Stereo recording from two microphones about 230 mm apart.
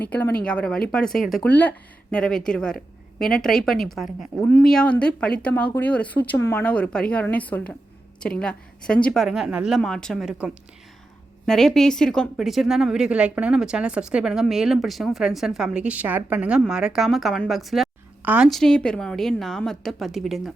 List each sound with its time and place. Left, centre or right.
0.0 s a woman's voice: centre